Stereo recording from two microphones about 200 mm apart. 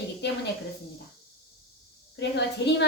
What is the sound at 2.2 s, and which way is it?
Speech, 60° left (ahead or behind).